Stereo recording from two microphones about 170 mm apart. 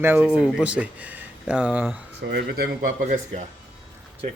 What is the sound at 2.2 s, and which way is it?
Speech, 80° right.